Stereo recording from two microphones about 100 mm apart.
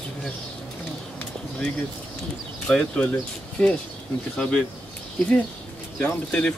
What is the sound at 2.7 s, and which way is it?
Speech, 10° left (ahead or behind).